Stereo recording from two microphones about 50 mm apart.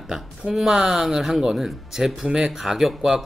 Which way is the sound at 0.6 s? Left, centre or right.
Centre.